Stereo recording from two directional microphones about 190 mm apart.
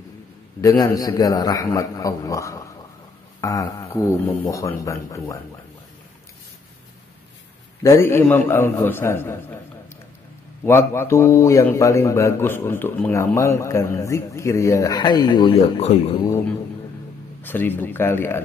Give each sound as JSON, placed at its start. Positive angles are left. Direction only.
{"t": 0.6, "sound": "speech", "side_deg": 15}
{"t": 7.8, "sound": "speech", "side_deg": 15}
{"t": 10.6, "sound": "speech", "side_deg": 10}
{"t": 17.4, "sound": "speech", "side_deg": 10}